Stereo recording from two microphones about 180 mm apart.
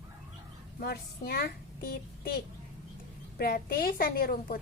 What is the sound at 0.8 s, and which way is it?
A woman's voice, 60° left (ahead or behind).